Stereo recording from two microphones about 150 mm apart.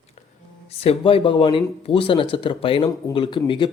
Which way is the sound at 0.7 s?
40° left (ahead or behind).